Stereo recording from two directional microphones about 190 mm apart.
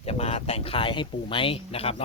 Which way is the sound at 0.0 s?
30° left (ahead or behind).